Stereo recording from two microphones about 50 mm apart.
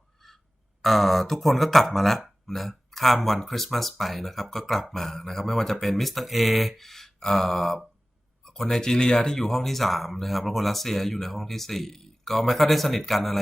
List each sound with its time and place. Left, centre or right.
0.8 s speech: centre